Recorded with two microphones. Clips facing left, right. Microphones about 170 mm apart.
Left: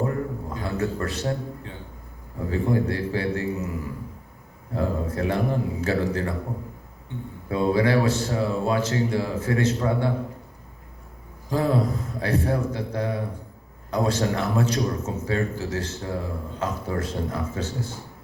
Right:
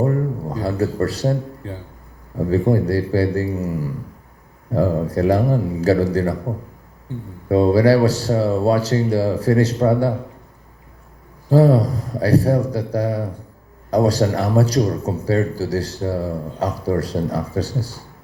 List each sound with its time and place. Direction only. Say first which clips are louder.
0.0 s a sound: right 6 dB; 35° right (ahead or behind)
0.9 s speech: right 7 dB; 35° right (ahead or behind)
7.5 s speech: right 7 dB; 35° right (ahead or behind)
11.4 s speech: right 8 dB; 35° right (ahead or behind)